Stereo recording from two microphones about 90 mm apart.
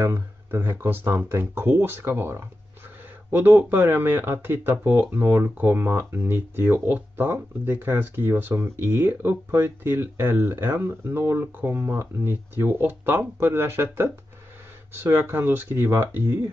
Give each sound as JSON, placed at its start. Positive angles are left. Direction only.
{"t": 0.0, "sound": "speech", "side_deg": -25}
{"t": 15.0, "sound": "speech", "side_deg": -25}